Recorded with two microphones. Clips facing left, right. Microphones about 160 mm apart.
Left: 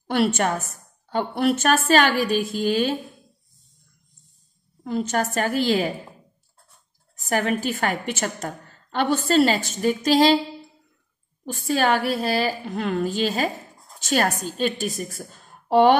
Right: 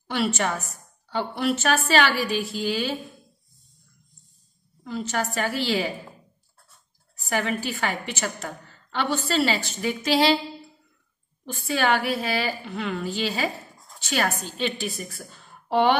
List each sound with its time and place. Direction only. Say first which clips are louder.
0.0 s a woman's voice: left 4 dB; 50° left (ahead or behind)
4.8 s a woman's voice: left 4 dB; 50° left (ahead or behind)
7.2 s a woman's voice: left 3 dB; 45° left (ahead or behind)
11.5 s a woman's voice: left 2 dB; 45° left (ahead or behind)